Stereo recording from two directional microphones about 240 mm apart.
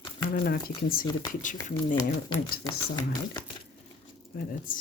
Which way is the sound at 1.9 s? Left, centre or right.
Centre.